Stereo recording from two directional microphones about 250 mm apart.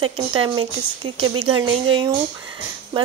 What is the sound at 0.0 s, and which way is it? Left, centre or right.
Speech, centre.